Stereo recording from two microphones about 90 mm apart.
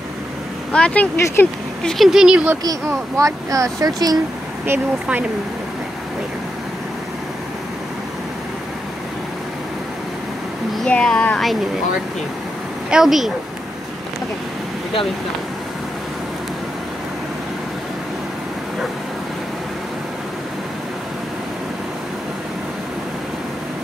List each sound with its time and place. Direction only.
0.7 s speech: 15° left (ahead or behind)
1.1 s speech: 25° left (ahead or behind)
1.8 s speech: 5° left (ahead or behind)
2.6 s speech: 40° right (ahead or behind)
10.8 s speech: 10° left (ahead or behind)
12.9 s speech: 5° right (ahead or behind)